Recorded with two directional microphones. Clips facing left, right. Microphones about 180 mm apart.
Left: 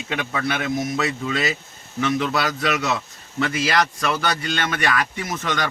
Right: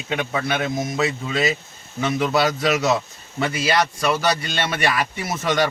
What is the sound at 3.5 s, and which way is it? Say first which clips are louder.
A man's voice: right 1 dB; centre (ahead or behind).